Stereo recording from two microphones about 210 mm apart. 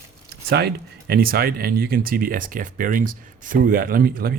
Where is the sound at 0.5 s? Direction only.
50° right (ahead or behind).